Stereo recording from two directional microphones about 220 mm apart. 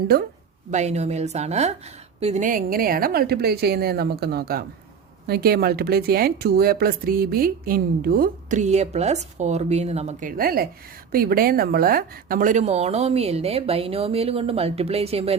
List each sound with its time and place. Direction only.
0.7 s a woman's voice: 30° right (ahead or behind)